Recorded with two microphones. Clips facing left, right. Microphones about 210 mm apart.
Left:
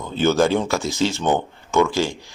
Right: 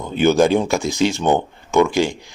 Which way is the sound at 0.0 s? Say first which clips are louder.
Right 3 dB; 15° right (ahead or behind).